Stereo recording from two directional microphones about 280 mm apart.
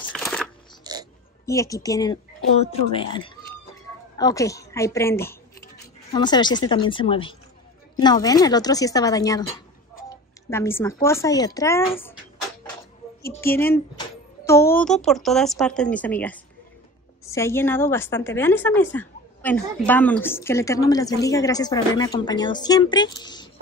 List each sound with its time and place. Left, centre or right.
0.1 s a sound: centre
0.8 s oink: centre
1.4 s a woman's voice: centre